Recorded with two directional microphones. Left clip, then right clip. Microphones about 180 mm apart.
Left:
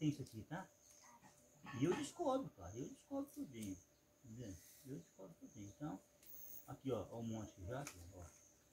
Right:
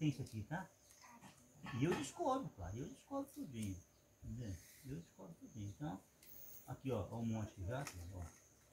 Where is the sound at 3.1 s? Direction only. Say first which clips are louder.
Right 2 dB; 5° left (ahead or behind).